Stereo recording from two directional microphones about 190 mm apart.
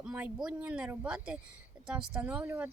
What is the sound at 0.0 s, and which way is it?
Speech, 5° right (ahead or behind).